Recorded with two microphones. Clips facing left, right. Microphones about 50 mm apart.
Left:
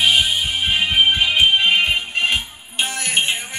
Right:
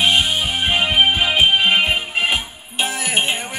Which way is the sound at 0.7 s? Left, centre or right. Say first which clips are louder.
Right 1 dB; right.